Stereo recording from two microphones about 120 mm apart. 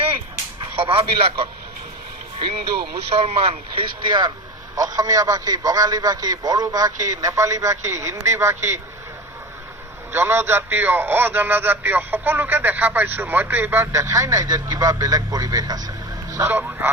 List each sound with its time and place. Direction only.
0.6 s a man's voice: 50° right (ahead or behind)
3.1 s speech: 55° right (ahead or behind)
4.7 s a man's voice: 30° right (ahead or behind)
10.1 s speech: 20° right (ahead or behind)